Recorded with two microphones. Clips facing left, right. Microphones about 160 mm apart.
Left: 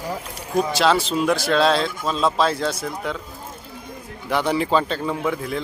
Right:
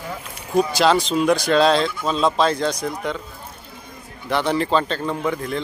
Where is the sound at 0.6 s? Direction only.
Centre (ahead or behind).